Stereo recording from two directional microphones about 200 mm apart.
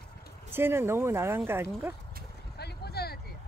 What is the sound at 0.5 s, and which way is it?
Speech, 10° right (ahead or behind).